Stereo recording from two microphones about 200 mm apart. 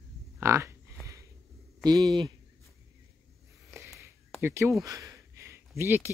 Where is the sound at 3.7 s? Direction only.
15° right (ahead or behind).